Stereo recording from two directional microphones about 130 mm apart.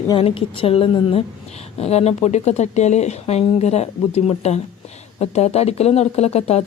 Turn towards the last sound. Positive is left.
turn(degrees=55)  # may be behind; listen again after turning